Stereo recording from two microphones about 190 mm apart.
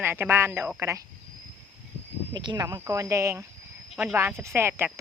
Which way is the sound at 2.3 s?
20° right (ahead or behind).